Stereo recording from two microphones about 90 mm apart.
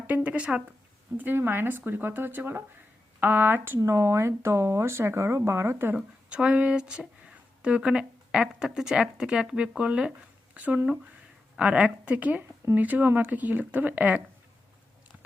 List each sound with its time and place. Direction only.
0.1 s speech: 15° right (ahead or behind)
3.8 s speech: 35° right (ahead or behind)
6.3 s speech: 15° right (ahead or behind)